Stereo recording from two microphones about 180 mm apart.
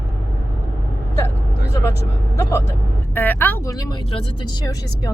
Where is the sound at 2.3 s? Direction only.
15° left (ahead or behind).